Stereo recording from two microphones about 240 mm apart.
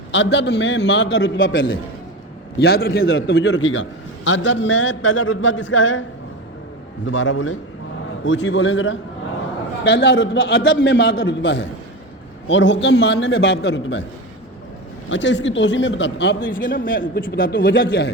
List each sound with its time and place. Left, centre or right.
0.1 s a man's voice: left
2.6 s a man's voice: left
3.0 s a man's voice: left
15.1 s a man's voice: left